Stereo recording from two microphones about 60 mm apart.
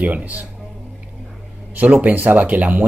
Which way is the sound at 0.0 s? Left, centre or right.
Right.